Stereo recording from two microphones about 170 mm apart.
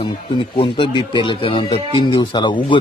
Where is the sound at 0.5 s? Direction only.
30° left (ahead or behind).